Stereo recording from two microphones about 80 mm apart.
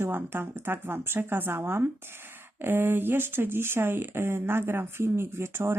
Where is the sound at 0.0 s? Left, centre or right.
Right.